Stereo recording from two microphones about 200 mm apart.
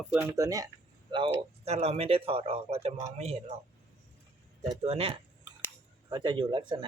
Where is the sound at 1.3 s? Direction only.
30° right (ahead or behind).